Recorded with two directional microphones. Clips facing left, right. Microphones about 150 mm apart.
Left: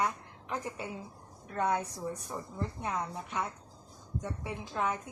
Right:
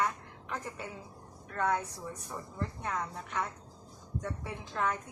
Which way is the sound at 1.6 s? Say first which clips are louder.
Left 1 dB; 20° left (ahead or behind).